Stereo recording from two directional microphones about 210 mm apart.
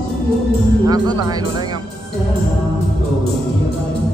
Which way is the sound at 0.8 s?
20° right (ahead or behind).